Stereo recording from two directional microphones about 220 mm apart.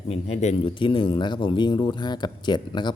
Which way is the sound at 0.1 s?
30° left (ahead or behind).